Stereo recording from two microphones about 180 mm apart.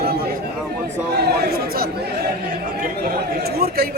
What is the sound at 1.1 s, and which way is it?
Chatter, 65° right (ahead or behind).